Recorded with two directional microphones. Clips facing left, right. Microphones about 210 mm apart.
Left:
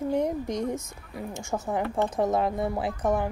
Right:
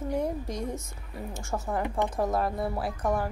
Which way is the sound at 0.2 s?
20° left (ahead or behind).